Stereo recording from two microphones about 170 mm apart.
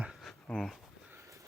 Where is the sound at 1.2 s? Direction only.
15° right (ahead or behind).